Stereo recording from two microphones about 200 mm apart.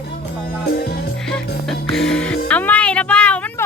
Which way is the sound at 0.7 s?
50° left (ahead or behind).